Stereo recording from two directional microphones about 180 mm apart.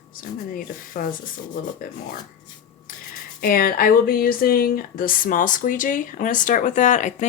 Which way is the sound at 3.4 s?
55° left (ahead or behind).